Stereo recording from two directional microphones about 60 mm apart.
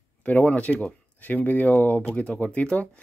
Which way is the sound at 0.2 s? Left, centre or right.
Left.